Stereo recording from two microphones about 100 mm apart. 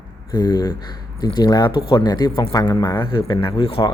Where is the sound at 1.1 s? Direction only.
50° left (ahead or behind).